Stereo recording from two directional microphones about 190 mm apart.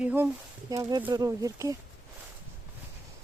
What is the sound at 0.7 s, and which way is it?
Speech, 20° right (ahead or behind).